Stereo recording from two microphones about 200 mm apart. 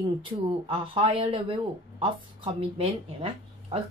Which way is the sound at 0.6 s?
25° right (ahead or behind).